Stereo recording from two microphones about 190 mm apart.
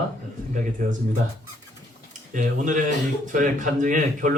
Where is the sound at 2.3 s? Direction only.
45° right (ahead or behind).